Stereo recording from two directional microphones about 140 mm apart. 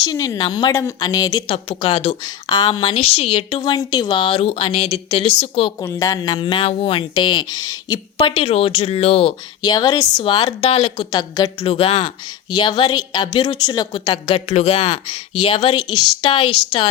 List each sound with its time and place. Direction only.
0.0 s a woman's voice: 25° left (ahead or behind)
0.7 s a woman's voice: 20° left (ahead or behind)
3.0 s speech: 45° left (ahead or behind)
3.6 s a woman's voice: 30° left (ahead or behind)
5.8 s speech: 20° left (ahead or behind)
8.3 s speech: 45° left (ahead or behind)
9.6 s a woman's voice: 30° left (ahead or behind)
10.8 s speech: 45° left (ahead or behind)
11.1 s a woman's voice: 30° left (ahead or behind)
11.6 s speech: 45° left (ahead or behind)
14.4 s speech: 50° left (ahead or behind); by 16.0 s 30° left (ahead or behind)
16.2 s speech: 40° left (ahead or behind)